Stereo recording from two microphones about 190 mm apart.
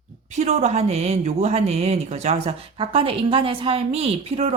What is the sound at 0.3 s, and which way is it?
Speech, 35° right (ahead or behind).